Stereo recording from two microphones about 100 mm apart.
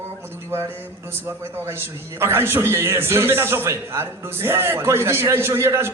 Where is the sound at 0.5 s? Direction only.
25° right (ahead or behind).